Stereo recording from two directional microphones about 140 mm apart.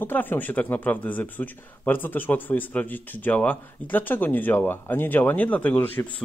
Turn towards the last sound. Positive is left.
turn(degrees=15)  # may be behind; listen again after turning